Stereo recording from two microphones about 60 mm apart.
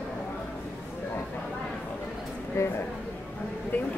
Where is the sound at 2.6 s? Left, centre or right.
Left.